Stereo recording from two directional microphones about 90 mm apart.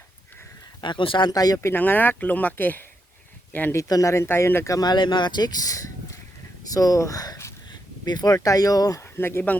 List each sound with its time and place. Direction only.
0.8 s speech: 65° left (ahead or behind)
1.3 s speech: 45° left (ahead or behind)
1.5 s speech: 25° left (ahead or behind)
3.8 s speech: 40° left (ahead or behind)
4.7 s speech: 50° left (ahead or behind)
9.1 s speech: 25° left (ahead or behind)